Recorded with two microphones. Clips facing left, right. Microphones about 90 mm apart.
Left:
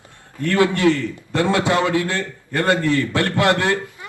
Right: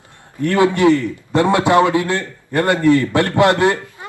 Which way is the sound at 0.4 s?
20° right (ahead or behind).